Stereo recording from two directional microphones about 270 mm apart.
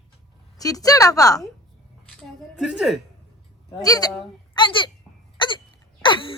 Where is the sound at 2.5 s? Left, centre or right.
Centre.